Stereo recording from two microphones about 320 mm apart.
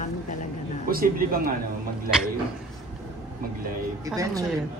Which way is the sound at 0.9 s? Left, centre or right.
Right.